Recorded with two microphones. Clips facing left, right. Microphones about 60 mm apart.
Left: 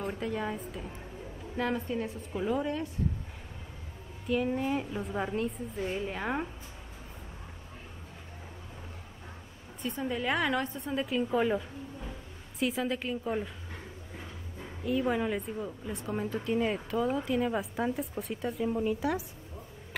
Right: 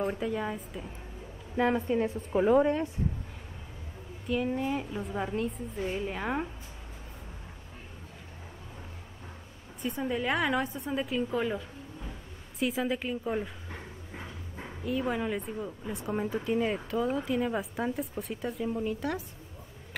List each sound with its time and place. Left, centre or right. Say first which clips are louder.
0.0 s speech: right 3 dB; centre
1.6 s a woman's voice: right 5 dB; right
4.3 s speech: even; centre
9.8 s speech: right 2 dB; centre
14.9 s speech: left 1 dB; centre